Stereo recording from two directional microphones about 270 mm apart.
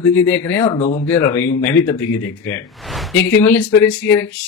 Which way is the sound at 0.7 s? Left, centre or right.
Left.